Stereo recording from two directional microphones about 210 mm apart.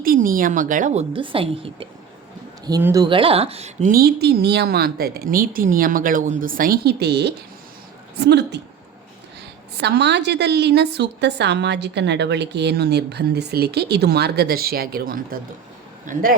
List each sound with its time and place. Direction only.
0.0 s a woman's voice: 40° right (ahead or behind)
9.7 s a woman's voice: 50° right (ahead or behind); by 16.2 s 35° right (ahead or behind)